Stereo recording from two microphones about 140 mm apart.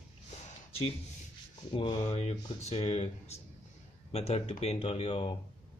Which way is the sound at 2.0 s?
50° left (ahead or behind).